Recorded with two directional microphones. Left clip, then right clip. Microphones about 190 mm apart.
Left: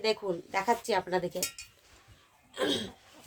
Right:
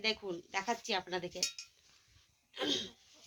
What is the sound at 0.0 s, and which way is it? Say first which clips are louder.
Speech: left 6 dB; 5° right (ahead or behind).